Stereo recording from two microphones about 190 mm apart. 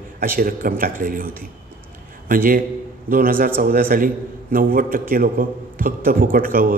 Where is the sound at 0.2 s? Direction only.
50° right (ahead or behind).